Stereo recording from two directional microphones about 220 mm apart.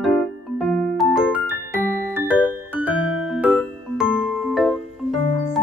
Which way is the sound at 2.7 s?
5° right (ahead or behind).